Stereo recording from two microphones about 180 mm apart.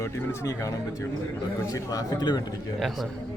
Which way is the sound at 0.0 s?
15° left (ahead or behind).